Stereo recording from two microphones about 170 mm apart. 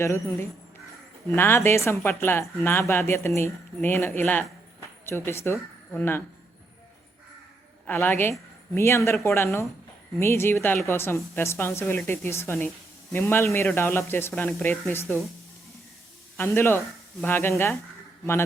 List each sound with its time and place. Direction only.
0.0 s speech: 15° left (ahead or behind)
7.9 s a woman's voice: 15° left (ahead or behind)
16.4 s speech: 15° left (ahead or behind)